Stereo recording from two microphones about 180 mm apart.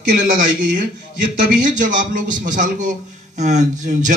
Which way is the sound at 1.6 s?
45° right (ahead or behind).